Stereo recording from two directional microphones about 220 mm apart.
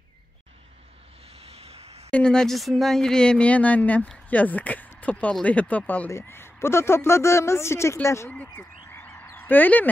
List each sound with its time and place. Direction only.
1.4 s vehicle: 25° right (ahead or behind)
2.0 s speech: 5° left (ahead or behind)